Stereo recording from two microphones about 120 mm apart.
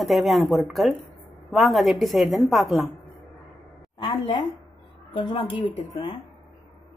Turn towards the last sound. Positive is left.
turn(degrees=45)  # may be behind; listen again after turning